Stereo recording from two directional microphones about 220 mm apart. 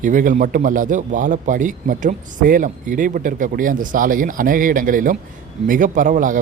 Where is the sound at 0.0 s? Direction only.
35° right (ahead or behind).